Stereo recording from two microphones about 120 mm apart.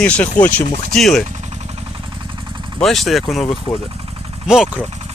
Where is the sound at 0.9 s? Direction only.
Centre (ahead or behind).